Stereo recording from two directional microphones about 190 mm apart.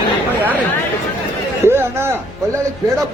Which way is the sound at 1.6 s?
15° right (ahead or behind).